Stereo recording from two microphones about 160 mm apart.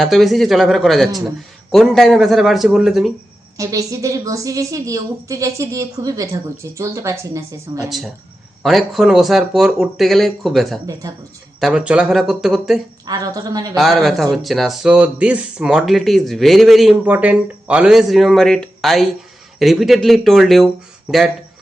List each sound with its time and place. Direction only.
0.0 s speech: centre (ahead or behind)
3.6 s a woman's voice: 20° right (ahead or behind)
7.9 s speech: centre (ahead or behind)
13.1 s a woman's voice: 20° right (ahead or behind)
13.7 s speech: centre (ahead or behind)